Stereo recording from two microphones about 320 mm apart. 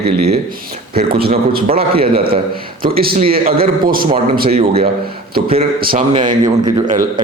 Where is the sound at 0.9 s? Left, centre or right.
Right.